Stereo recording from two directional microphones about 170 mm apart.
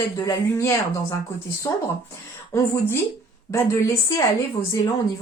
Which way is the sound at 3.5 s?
15° left (ahead or behind).